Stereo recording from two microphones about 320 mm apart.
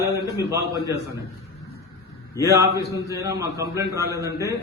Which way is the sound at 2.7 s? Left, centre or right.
Right.